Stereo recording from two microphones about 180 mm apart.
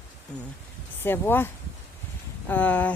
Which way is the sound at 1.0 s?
10° left (ahead or behind).